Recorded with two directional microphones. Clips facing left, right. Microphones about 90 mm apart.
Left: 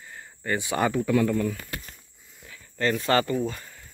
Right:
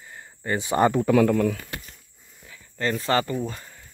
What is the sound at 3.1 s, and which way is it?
Speech, 20° right (ahead or behind).